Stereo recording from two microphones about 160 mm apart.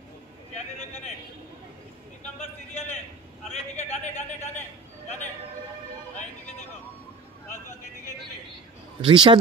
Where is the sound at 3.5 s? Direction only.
45° left (ahead or behind).